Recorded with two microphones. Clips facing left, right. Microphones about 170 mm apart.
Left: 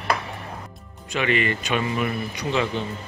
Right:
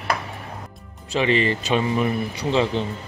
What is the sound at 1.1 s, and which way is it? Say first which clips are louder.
Speech: right 3 dB; 30° right (ahead or behind).